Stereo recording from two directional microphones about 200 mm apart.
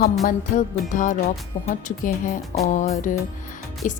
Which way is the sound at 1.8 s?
40° left (ahead or behind).